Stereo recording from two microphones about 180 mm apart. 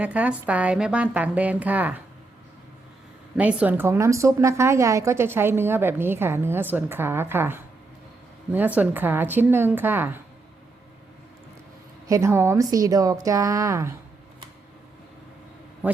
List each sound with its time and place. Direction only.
0.0 s a woman's voice: 10° right (ahead or behind)
3.3 s a woman's voice: 10° right (ahead or behind)
12.0 s a woman's voice: 15° right (ahead or behind)
15.8 s a sound: 10° right (ahead or behind)